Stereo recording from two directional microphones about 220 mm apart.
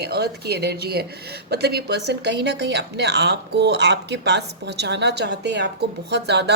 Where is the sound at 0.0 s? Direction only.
45° right (ahead or behind).